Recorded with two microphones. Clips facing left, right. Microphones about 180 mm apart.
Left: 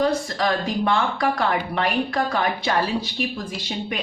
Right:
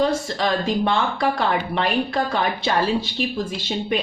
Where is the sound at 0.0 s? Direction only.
25° right (ahead or behind).